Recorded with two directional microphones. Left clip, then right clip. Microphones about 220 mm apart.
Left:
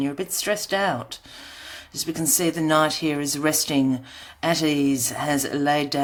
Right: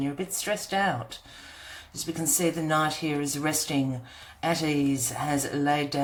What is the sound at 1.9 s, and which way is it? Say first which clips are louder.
Speech: left 5 dB; 40° left (ahead or behind).